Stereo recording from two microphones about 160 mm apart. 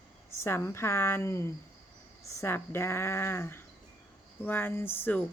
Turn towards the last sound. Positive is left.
turn(degrees=10)  # may be behind; listen again after turning